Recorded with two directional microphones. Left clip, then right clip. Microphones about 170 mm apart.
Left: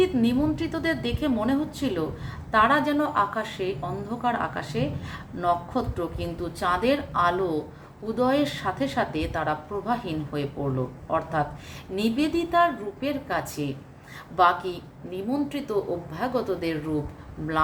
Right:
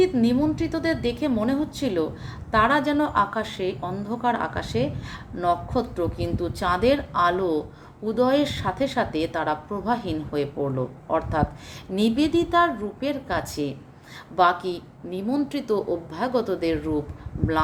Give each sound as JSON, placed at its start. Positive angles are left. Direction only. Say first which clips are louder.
{"t": 0.0, "sound": "a woman's voice", "louder": "right 2 dB", "side_deg": -40}